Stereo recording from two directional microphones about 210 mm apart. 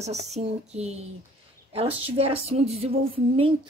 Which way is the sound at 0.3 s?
30° right (ahead or behind).